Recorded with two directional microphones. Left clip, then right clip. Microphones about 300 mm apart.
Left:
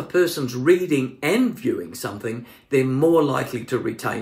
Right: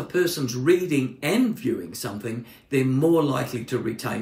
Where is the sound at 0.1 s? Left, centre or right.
Centre.